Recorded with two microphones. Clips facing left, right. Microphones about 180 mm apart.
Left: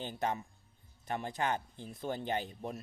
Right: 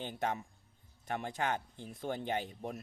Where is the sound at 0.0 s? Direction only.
15° right (ahead or behind).